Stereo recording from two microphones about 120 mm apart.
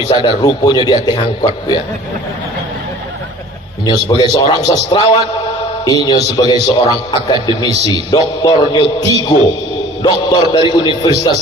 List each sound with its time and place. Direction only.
0.2 s a man's voice: 35° left (ahead or behind)
3.8 s a man's voice: 40° left (ahead or behind)
10.0 s a man's voice: 40° left (ahead or behind)